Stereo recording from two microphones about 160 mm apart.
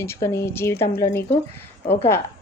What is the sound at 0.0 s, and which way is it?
A woman's voice, 15° left (ahead or behind).